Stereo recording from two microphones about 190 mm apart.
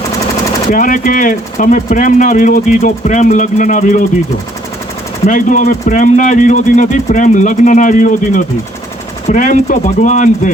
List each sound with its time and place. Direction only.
0.7 s speech: 45° left (ahead or behind)
5.2 s speech: 45° left (ahead or behind)